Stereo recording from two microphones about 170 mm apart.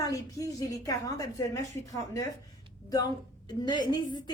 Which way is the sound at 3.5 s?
25° left (ahead or behind).